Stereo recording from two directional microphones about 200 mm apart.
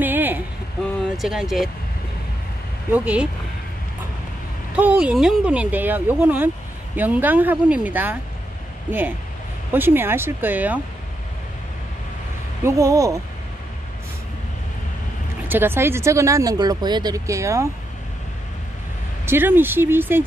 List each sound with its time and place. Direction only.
0.0 s a sound: 10° right (ahead or behind)
1.1 s speech: centre (ahead or behind)
2.9 s speech: 5° right (ahead or behind)
4.7 s speech: 5° right (ahead or behind)
9.7 s speech: 10° right (ahead or behind)
12.6 s speech: 15° right (ahead or behind)
15.4 s speech: 10° right (ahead or behind)
19.2 s speech: 10° right (ahead or behind)